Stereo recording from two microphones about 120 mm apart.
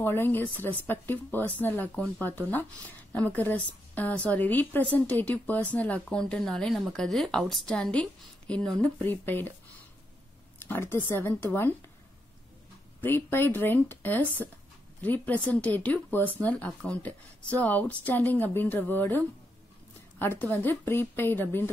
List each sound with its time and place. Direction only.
0.0 s a woman's voice: 15° left (ahead or behind)
10.7 s a woman's voice: 20° left (ahead or behind)
13.0 s a woman's voice: 15° left (ahead or behind)